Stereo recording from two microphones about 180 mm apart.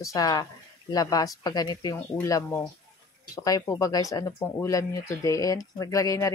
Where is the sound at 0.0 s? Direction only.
20° left (ahead or behind).